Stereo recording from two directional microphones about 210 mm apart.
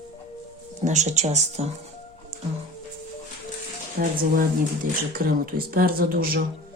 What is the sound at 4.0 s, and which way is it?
Speech, 45° right (ahead or behind).